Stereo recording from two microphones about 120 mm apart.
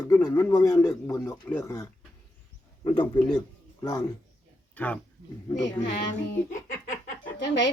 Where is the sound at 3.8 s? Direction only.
30° left (ahead or behind).